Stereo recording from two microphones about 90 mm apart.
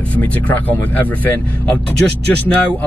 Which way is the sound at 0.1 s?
20° left (ahead or behind).